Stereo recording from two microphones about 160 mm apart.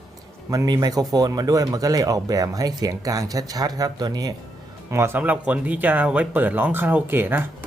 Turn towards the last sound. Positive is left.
turn(degrees=-15)  # may be behind; listen again after turning